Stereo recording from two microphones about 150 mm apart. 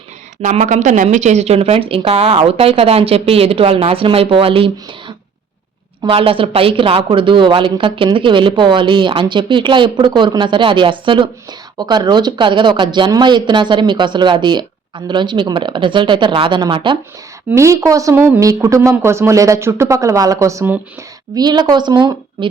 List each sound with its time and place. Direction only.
0.4 s speech: 55° right (ahead or behind); by 17.0 s 30° right (ahead or behind)
17.5 s speech: 20° right (ahead or behind)